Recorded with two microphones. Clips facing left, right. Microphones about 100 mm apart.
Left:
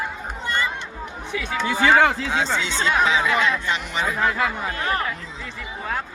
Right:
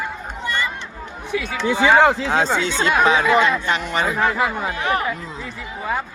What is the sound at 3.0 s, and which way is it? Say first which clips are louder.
Speech: right 4 dB; 55° right (ahead or behind).